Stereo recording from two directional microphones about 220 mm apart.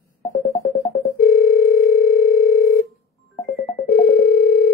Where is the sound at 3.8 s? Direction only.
40° left (ahead or behind).